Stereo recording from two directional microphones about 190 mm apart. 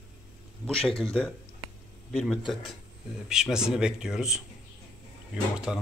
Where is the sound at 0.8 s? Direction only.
5° left (ahead or behind).